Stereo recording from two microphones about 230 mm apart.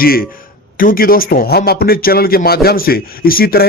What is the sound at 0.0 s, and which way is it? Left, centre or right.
A man's voice, left.